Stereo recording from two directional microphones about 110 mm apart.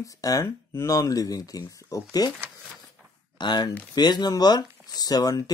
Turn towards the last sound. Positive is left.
turn(degrees=35)  # may be behind; listen again after turning